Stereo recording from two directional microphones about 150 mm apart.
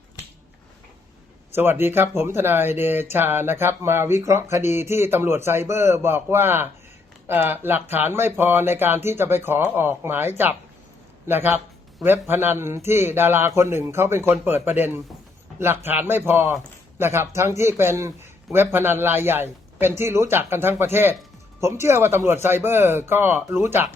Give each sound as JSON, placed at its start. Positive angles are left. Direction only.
{"t": 1.5, "sound": "speech", "side_deg": -15}